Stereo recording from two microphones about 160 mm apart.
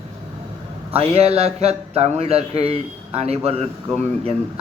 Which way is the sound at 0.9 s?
40° right (ahead or behind).